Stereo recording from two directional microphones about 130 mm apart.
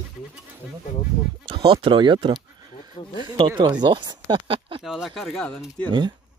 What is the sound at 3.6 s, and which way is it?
Speech, 35° right (ahead or behind).